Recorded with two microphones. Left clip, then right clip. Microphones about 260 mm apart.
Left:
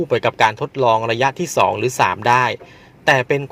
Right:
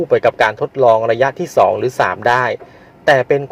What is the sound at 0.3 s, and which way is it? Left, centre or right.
A man's voice, left.